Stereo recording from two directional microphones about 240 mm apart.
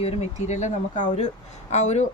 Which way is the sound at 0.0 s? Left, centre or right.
Left.